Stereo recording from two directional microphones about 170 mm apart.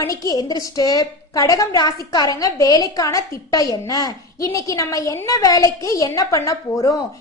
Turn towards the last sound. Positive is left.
turn(degrees=20)  # may be behind; listen again after turning